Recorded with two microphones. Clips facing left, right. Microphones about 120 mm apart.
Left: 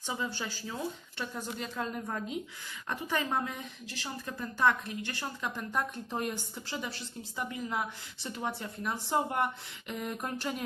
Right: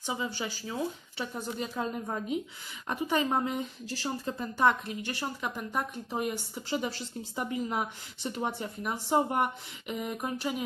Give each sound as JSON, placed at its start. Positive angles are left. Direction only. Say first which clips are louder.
{"t": 0.0, "sound": "speech", "louder": "right 2 dB", "side_deg": -15}
{"t": 3.8, "sound": "speech", "louder": "right 7 dB", "side_deg": -40}
{"t": 4.3, "sound": "speech", "louder": "right 2 dB", "side_deg": -20}
{"t": 5.5, "sound": "speech", "louder": "right 1 dB", "side_deg": -5}
{"t": 6.7, "sound": "speech", "louder": "right 7 dB", "side_deg": -25}